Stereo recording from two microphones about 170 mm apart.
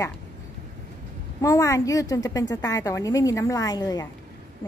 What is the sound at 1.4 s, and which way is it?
A woman's voice, 20° left (ahead or behind).